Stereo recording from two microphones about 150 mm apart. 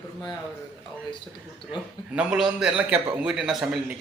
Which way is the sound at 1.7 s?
5° right (ahead or behind).